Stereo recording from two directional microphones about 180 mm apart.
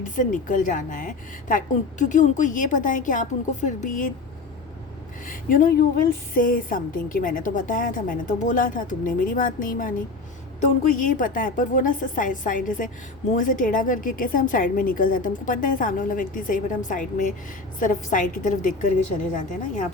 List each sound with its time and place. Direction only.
0.2 s a woman's voice: 45° left (ahead or behind)
5.2 s a woman's voice: 50° left (ahead or behind)
11.1 s a woman's voice: 50° left (ahead or behind)